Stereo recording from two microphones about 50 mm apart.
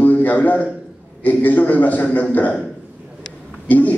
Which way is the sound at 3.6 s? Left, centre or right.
Left.